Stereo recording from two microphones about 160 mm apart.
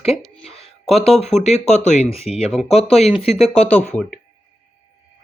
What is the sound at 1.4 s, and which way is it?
Speech, 45° left (ahead or behind).